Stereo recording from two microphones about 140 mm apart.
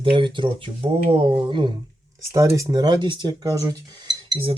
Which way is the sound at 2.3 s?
20° right (ahead or behind).